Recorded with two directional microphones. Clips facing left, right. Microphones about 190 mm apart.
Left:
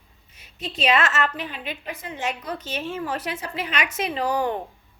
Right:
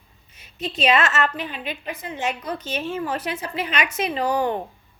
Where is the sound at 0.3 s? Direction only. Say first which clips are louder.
Right 3 dB; 20° right (ahead or behind).